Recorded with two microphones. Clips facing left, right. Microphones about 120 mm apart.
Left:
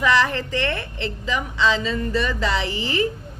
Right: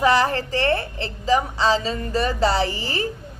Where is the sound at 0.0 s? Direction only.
35° right (ahead or behind).